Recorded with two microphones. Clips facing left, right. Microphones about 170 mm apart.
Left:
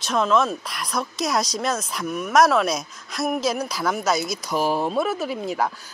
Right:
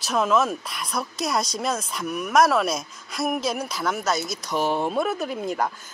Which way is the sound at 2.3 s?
Centre (ahead or behind).